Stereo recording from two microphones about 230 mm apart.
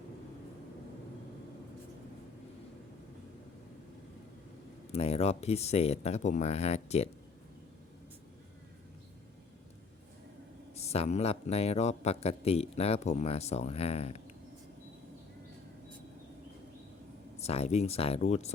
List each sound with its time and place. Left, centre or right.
4.9 s speech: left
10.8 s speech: left
17.4 s speech: left